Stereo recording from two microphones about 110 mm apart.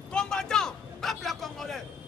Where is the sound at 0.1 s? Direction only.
5° left (ahead or behind).